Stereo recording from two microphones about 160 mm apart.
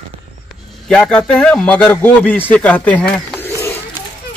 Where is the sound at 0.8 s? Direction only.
5° left (ahead or behind).